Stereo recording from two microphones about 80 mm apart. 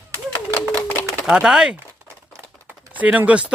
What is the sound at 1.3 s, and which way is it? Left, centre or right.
Speech, centre.